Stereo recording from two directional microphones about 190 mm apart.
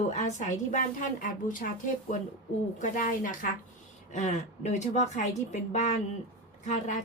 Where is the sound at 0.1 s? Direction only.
40° left (ahead or behind).